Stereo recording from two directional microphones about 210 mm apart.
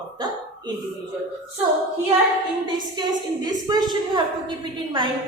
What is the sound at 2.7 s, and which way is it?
A woman's voice, 20° right (ahead or behind).